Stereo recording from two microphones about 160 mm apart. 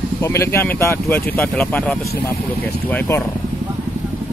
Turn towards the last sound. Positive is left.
turn(degrees=15)  # may be behind; listen again after turning